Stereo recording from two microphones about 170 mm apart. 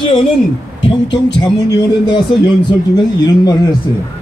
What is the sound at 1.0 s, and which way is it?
Heart murmur, 90° left.